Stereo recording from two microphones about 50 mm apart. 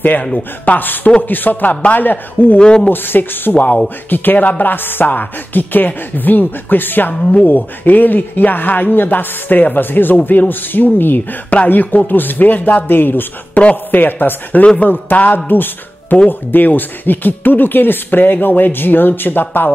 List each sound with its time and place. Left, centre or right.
0.4 s speech: left
2.6 s speech: centre
2.9 s speech: left